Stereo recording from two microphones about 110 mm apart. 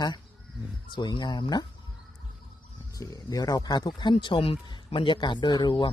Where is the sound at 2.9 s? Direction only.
35° left (ahead or behind).